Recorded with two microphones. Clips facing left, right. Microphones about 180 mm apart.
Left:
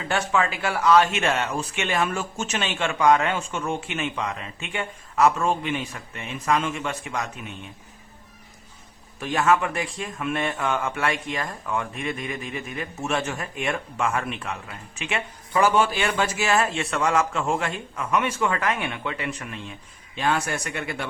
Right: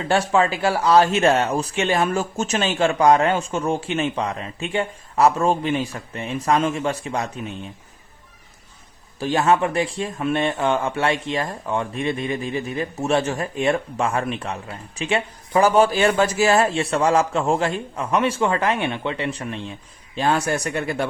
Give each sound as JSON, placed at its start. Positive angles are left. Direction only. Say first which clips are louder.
{"t": 0.1, "sound": "speech", "louder": "right 5 dB", "side_deg": -30}
{"t": 9.1, "sound": "speech", "louder": "right 3 dB", "side_deg": -30}